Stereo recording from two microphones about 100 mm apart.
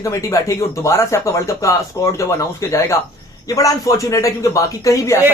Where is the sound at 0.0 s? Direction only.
30° left (ahead or behind).